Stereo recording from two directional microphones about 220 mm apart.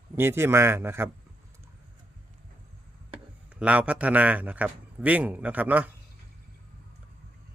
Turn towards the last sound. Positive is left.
turn(degrees=-5)  # may be behind; listen again after turning